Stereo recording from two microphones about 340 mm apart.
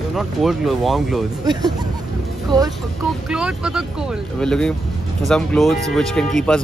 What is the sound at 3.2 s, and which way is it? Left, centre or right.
Speech, centre.